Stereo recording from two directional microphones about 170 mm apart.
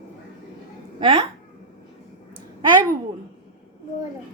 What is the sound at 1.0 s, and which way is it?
Speech, 35° right (ahead or behind).